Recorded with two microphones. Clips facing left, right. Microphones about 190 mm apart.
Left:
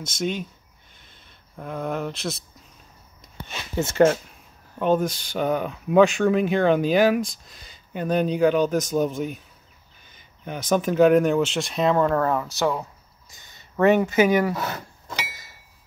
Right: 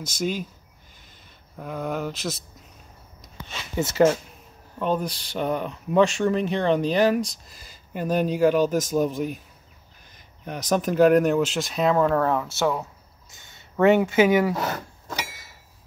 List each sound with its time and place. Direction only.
0.0 s speech: centre (ahead or behind)
1.6 s speech: centre (ahead or behind)
3.4 s speech: 5° right (ahead or behind)
4.7 s speech: centre (ahead or behind)